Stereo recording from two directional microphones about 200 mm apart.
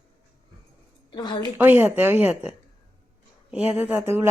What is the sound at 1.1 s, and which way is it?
Speech, 20° left (ahead or behind).